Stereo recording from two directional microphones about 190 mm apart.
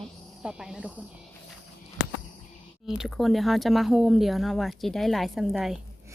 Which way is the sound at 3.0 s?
Centre (ahead or behind).